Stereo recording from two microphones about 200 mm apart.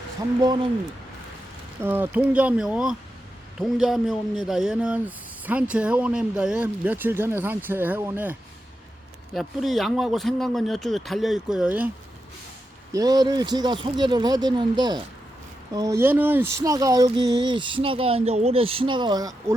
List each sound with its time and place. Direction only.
0.4 s speech: 20° right (ahead or behind)
1.8 s speech: 10° right (ahead or behind)
12.9 s speech: 20° right (ahead or behind)